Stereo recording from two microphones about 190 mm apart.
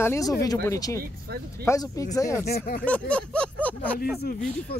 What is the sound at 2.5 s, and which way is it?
Speech, 50° left (ahead or behind).